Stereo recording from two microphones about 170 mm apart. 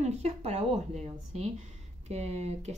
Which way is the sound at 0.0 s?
40° right (ahead or behind).